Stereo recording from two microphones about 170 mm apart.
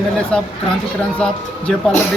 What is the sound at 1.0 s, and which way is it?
Speech, 5° left (ahead or behind).